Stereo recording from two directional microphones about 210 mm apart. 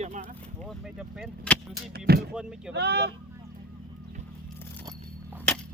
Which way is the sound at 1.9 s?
50° right (ahead or behind).